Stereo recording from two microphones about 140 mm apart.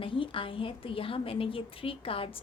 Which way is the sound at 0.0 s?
40° left (ahead or behind).